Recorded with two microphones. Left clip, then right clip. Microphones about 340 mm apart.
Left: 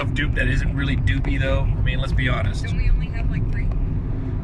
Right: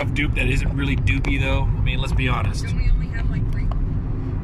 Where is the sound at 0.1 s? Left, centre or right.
Centre.